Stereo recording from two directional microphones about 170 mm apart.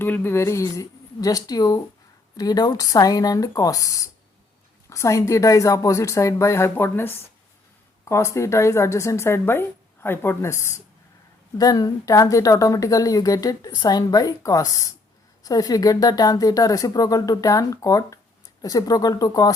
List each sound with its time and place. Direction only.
0.0 s speech: 10° left (ahead or behind)